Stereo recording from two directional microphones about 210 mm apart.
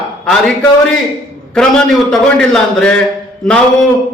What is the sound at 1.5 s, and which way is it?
A man's voice, 5° left (ahead or behind).